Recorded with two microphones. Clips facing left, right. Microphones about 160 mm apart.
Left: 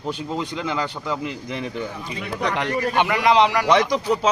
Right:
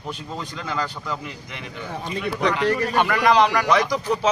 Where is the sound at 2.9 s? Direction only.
20° left (ahead or behind).